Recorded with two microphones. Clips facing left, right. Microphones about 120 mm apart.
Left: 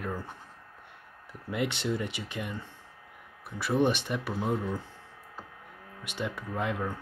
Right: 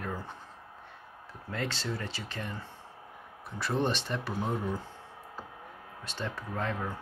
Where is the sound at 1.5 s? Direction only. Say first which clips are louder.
Left 5 dB; 15° left (ahead or behind).